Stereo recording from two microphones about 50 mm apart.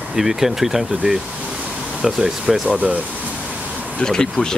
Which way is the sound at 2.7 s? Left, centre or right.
Right.